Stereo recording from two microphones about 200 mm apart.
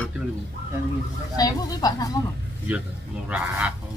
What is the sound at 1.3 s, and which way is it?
Speech, 20° left (ahead or behind).